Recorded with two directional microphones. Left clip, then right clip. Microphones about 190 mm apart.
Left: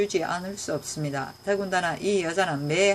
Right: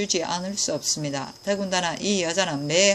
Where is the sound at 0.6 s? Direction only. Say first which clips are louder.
Right 5 dB; 15° right (ahead or behind).